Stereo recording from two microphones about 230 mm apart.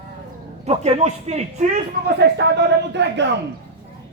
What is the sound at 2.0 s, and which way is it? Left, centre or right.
Speech, right.